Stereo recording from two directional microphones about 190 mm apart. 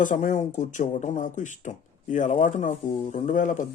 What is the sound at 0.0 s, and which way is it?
Speech, 40° left (ahead or behind).